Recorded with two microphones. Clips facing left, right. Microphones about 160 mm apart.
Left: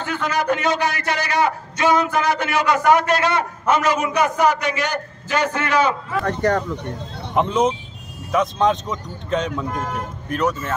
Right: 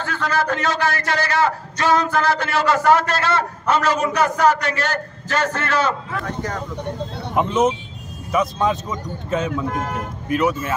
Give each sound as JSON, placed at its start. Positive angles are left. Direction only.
{"t": 0.0, "sound": "a man's voice", "side_deg": 15}
{"t": 7.3, "sound": "speech", "side_deg": -5}